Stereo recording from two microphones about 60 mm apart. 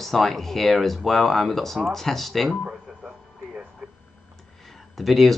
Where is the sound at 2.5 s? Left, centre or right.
Centre.